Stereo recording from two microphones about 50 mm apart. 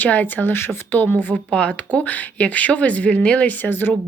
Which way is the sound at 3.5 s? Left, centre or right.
Left.